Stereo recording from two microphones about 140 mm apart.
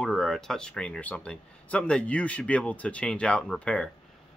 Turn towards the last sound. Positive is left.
turn(degrees=5)  # may be behind; listen again after turning